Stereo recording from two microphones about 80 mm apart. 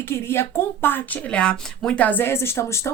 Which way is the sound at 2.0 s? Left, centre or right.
Left.